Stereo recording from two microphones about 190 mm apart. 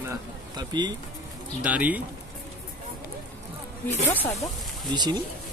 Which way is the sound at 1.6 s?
10° right (ahead or behind).